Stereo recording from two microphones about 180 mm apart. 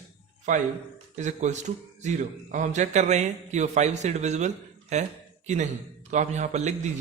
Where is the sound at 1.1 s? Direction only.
40° right (ahead or behind).